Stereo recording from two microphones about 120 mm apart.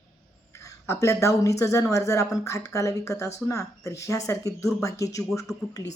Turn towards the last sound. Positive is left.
turn(degrees=25)  # may be behind; listen again after turning